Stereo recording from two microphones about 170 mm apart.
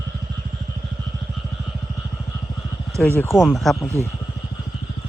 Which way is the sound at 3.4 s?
Centre (ahead or behind).